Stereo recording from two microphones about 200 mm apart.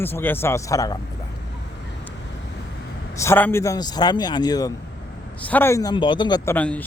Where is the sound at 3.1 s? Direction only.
15° left (ahead or behind).